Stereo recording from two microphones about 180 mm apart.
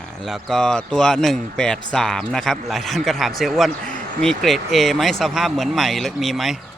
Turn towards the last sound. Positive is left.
turn(degrees=0)  # may be behind; listen again after turning